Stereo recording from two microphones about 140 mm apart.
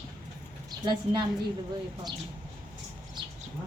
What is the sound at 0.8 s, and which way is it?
Speech, 30° right (ahead or behind).